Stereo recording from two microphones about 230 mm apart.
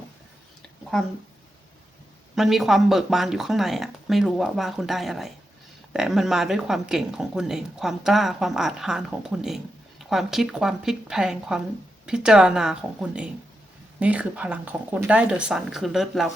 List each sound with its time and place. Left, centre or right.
2.3 s speech: centre